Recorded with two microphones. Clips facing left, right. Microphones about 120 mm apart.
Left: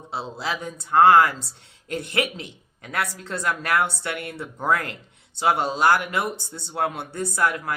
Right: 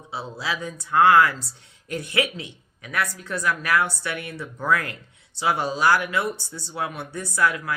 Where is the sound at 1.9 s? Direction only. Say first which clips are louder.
Even; 55° left (ahead or behind).